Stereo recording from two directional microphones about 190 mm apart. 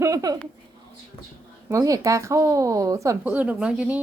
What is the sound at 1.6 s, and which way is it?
Speech, 15° right (ahead or behind).